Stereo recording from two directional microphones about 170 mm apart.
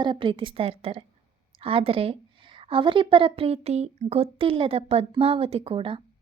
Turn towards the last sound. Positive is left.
turn(degrees=-30)  # may be behind; listen again after turning